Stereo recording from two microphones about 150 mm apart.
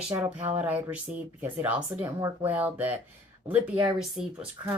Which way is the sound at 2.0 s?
20° right (ahead or behind).